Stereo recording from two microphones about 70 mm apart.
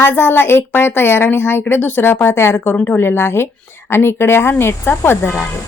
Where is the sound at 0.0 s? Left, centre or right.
Left.